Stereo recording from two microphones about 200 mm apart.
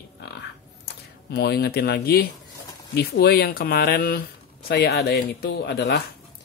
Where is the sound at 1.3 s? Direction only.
50° left (ahead or behind).